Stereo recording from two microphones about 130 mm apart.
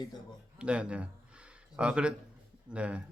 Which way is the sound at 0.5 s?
10° right (ahead or behind).